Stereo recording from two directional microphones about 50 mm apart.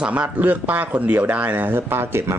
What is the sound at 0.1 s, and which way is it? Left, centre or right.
Speech, right.